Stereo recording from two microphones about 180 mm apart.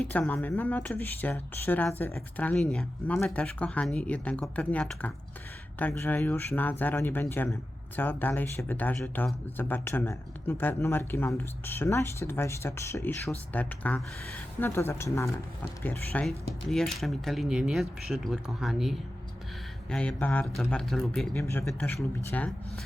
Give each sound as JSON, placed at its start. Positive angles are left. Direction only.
{"t": 0.0, "sound": "speech", "side_deg": 10}
{"t": 21.3, "sound": "speech", "side_deg": 15}
{"t": 21.7, "sound": "speech", "side_deg": 0}